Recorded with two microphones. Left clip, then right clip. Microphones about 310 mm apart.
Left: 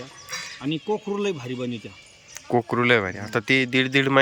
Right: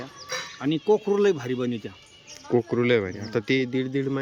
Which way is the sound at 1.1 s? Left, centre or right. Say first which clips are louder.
Right 5 dB; centre.